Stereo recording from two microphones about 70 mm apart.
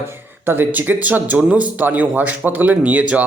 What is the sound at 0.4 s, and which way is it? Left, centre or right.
A man's voice, right.